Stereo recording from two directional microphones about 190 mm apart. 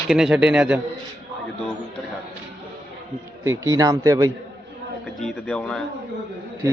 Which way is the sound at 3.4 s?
15° right (ahead or behind).